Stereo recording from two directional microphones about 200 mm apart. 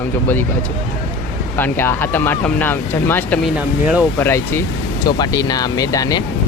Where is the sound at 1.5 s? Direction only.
10° left (ahead or behind).